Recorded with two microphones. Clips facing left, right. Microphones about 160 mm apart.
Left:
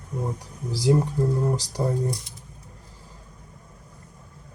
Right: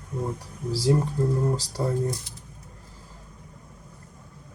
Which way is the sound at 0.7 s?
15° left (ahead or behind).